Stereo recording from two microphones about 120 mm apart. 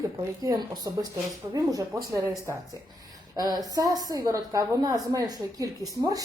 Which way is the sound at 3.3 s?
35° right (ahead or behind).